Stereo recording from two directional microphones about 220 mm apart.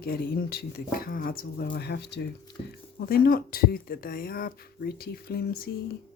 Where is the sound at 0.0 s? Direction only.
45° left (ahead or behind).